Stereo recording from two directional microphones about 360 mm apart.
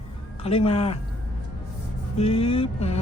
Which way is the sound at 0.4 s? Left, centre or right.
Centre.